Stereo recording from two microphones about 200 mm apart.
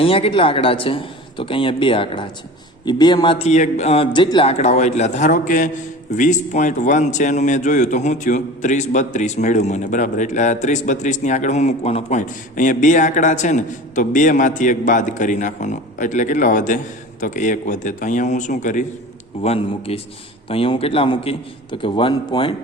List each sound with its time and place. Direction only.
0.0 s a man's voice: 30° left (ahead or behind)